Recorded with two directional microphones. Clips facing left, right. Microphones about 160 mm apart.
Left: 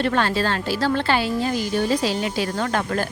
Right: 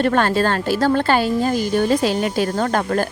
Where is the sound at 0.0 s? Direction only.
50° right (ahead or behind).